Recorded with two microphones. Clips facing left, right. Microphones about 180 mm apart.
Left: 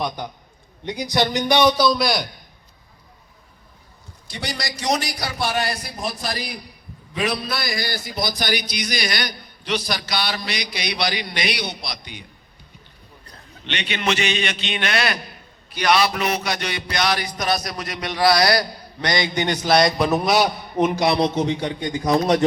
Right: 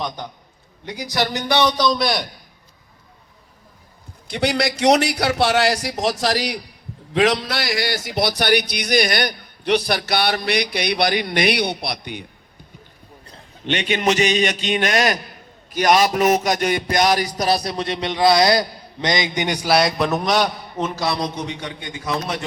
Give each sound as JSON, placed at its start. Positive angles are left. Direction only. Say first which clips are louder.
{"t": 0.2, "sound": "a man's voice", "louder": "left 1 dB", "side_deg": 10}
{"t": 4.3, "sound": "a man's voice", "louder": "right 10 dB", "side_deg": -65}
{"t": 13.7, "sound": "a man's voice", "louder": "right 5 dB", "side_deg": -45}
{"t": 15.7, "sound": "a sound", "louder": "right 3 dB", "side_deg": -45}